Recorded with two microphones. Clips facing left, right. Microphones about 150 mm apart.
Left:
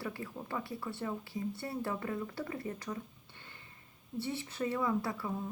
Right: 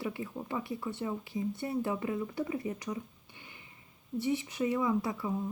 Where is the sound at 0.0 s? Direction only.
20° right (ahead or behind).